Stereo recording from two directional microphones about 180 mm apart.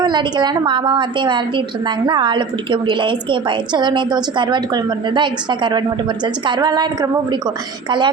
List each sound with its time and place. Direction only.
0.0 s a woman's voice: 25° right (ahead or behind)